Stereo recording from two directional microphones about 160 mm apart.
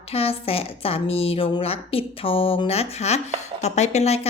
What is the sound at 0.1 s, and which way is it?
Speech, 35° left (ahead or behind).